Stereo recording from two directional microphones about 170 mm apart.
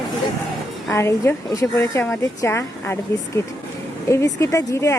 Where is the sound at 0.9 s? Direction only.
15° left (ahead or behind).